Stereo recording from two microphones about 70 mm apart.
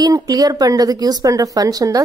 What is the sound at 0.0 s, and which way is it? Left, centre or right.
A woman's voice, right.